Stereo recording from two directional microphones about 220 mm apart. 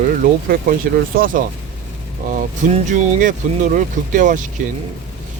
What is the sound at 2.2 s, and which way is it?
Speech, 35° right (ahead or behind).